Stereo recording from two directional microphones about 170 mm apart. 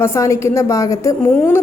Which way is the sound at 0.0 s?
15° left (ahead or behind).